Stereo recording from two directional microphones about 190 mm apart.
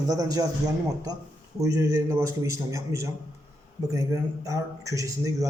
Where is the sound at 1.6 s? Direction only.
15° right (ahead or behind).